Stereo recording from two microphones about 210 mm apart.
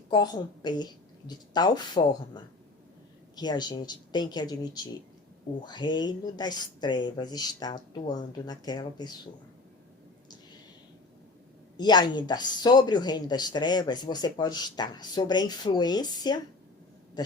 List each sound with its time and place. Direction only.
0.1 s speech: 20° left (ahead or behind)
11.8 s speech: 20° left (ahead or behind)